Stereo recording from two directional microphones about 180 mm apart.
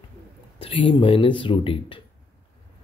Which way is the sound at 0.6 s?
30° left (ahead or behind).